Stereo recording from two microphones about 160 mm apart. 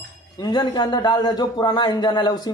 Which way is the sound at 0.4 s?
25° left (ahead or behind).